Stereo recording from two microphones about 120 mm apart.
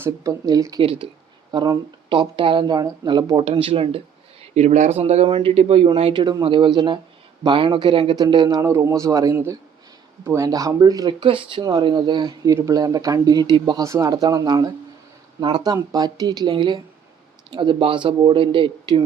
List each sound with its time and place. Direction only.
0.0 s speech: 30° right (ahead or behind)
0.8 s speech: 50° right (ahead or behind)
2.0 s speech: 45° right (ahead or behind)
3.6 s speech: 50° right (ahead or behind)
4.5 s speech: 75° right (ahead or behind)
4.9 s speech: 65° right (ahead or behind)
6.1 s speech: 45° right (ahead or behind)
11.2 s speech: 45° right (ahead or behind)
13.8 s speech: 25° right (ahead or behind); by 19.0 s 45° right (ahead or behind)